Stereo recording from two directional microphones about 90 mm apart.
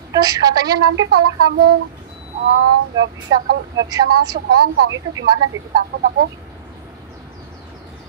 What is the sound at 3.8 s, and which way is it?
Speech, 45° right (ahead or behind).